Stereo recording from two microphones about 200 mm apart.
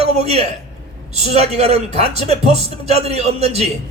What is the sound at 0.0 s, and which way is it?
A man's voice, 30° right (ahead or behind).